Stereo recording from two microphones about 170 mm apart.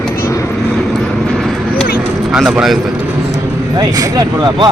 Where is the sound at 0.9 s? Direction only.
Centre (ahead or behind).